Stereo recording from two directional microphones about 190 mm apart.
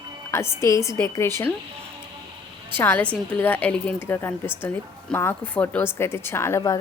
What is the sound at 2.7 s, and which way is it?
Speech, 10° left (ahead or behind).